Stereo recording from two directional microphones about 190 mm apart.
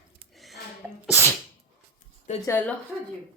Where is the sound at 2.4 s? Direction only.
10° left (ahead or behind).